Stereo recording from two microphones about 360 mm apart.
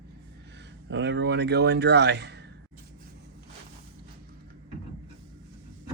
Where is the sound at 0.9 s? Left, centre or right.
Right.